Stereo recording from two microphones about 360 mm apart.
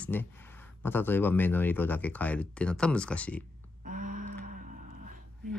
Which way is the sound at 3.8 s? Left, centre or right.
Right.